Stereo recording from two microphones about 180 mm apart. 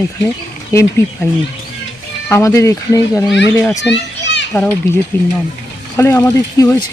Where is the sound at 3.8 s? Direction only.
75° left (ahead or behind).